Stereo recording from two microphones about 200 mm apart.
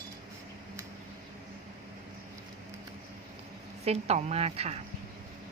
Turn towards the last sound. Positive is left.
turn(degrees=-30)  # may be behind; listen again after turning